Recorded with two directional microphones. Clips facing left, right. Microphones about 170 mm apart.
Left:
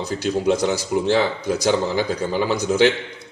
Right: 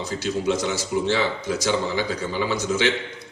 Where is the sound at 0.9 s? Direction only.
50° left (ahead or behind).